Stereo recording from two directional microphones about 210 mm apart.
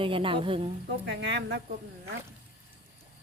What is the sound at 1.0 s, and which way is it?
Speech, 55° right (ahead or behind).